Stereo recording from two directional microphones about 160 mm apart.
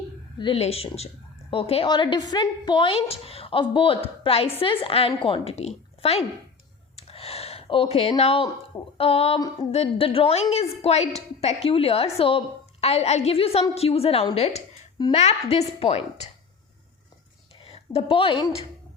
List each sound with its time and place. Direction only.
0.3 s a woman's voice: 35° left (ahead or behind)
6.9 s a sound: 40° left (ahead or behind)
9.0 s a woman's voice: 35° left (ahead or behind)
17.6 s a woman's voice: 35° left (ahead or behind)